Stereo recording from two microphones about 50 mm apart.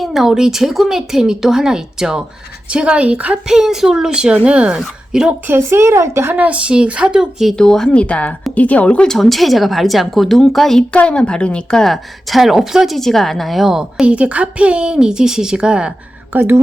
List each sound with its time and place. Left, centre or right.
0.0 s a woman's voice: centre
2.6 s speech: right
3.4 s a woman's voice: centre
5.1 s a woman's voice: centre
5.6 s speech: right
6.3 s speech: right; by 7.5 s centre
7.6 s speech: centre
7.9 s a woman's voice: left
9.0 s a woman's voice: centre
10.9 s a woman's voice: left
11.8 s a woman's voice: centre
13.0 s a woman's voice: centre
14.0 s speech: right
16.3 s speech: right